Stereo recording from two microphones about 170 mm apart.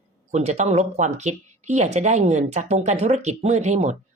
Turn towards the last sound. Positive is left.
turn(degrees=-40)  # may be behind; listen again after turning